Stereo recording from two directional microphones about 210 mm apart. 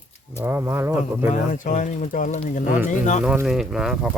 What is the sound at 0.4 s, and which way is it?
Speech, 10° right (ahead or behind).